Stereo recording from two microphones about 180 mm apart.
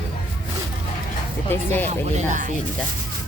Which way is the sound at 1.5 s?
10° left (ahead or behind).